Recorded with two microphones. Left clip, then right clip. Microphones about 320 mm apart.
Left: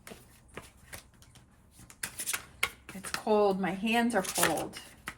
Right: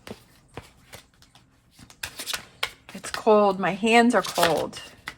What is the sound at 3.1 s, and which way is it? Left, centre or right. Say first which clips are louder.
Speech: right 8 dB; centre.